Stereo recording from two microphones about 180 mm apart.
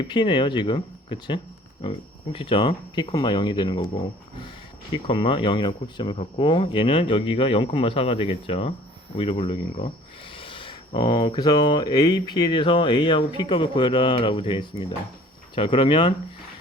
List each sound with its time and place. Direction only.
0.0 s speech: 25° left (ahead or behind)
4.9 s speech: 30° left (ahead or behind)